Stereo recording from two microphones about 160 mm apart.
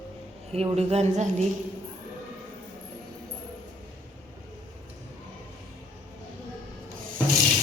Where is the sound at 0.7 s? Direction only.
40° right (ahead or behind).